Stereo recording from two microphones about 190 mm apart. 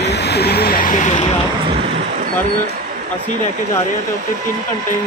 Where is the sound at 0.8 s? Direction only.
40° left (ahead or behind).